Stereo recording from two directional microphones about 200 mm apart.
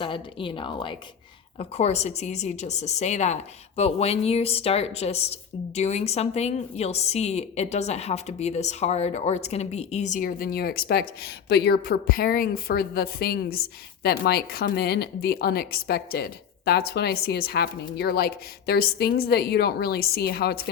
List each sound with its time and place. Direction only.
0.0 s a woman's voice: 25° left (ahead or behind); by 20.6 s 50° left (ahead or behind)